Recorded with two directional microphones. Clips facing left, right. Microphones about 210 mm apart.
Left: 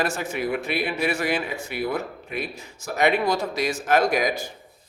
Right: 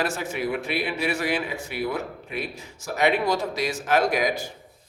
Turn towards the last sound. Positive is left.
turn(degrees=45)  # may be behind; listen again after turning